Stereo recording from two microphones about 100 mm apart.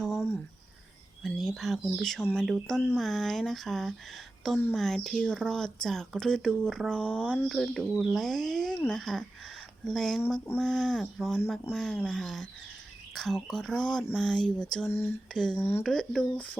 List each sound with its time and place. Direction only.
0.0 s a sound: 5° right (ahead or behind)
1.4 s speech: centre (ahead or behind)
14.8 s speech: 20° left (ahead or behind)
15.3 s speech: 5° left (ahead or behind)
15.5 s speech: 25° left (ahead or behind)
15.8 s speech: 5° left (ahead or behind)